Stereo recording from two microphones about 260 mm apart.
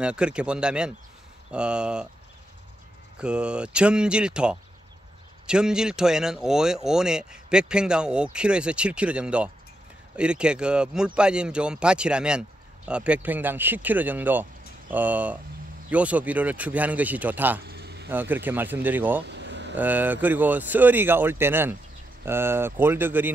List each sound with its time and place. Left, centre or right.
0.0 s speech: centre
3.2 s speech: centre
17.6 s a sound: right
18.1 s speech: centre
19.2 s vehicle: right
19.8 s speech: centre